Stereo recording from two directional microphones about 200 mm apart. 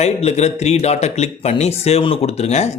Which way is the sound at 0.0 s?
30° left (ahead or behind).